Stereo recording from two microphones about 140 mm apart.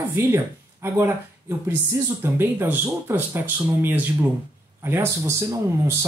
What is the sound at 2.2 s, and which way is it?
Speech, 15° right (ahead or behind).